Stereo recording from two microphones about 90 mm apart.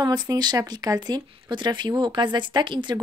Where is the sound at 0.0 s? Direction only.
50° right (ahead or behind).